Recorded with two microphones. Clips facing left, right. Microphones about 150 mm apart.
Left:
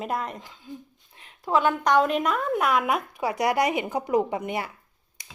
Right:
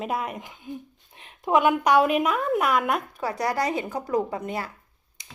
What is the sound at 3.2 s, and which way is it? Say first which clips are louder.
Speech: left 5 dB; 15° left (ahead or behind).